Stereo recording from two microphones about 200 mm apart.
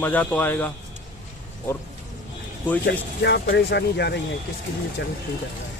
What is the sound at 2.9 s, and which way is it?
Speech, 55° left (ahead or behind).